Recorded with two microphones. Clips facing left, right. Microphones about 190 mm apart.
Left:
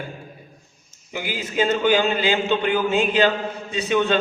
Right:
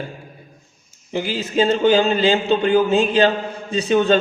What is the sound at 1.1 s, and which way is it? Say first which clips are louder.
A man's voice: right 5 dB; 30° right (ahead or behind).